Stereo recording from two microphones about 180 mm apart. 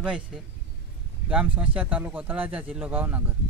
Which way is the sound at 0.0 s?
5° right (ahead or behind).